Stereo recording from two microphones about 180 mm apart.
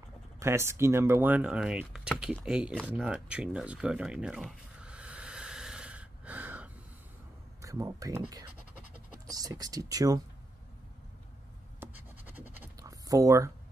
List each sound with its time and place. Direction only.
0.4 s speech: 15° right (ahead or behind)
12.5 s writing: 15° right (ahead or behind)